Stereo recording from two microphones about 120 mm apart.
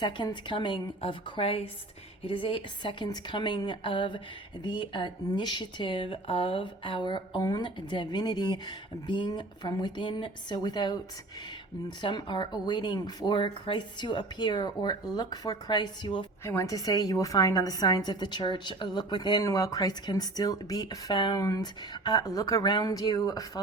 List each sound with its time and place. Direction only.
0.0 s a woman's voice: 40° left (ahead or behind)
16.4 s speech: 25° left (ahead or behind); by 19.5 s 40° left (ahead or behind)
19.5 s speech: 30° left (ahead or behind)